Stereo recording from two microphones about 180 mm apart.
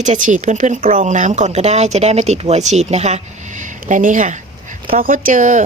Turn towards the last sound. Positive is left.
turn(degrees=-45)  # may be behind; listen again after turning